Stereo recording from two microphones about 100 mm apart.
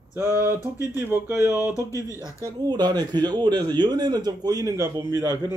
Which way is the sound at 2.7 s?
45° right (ahead or behind).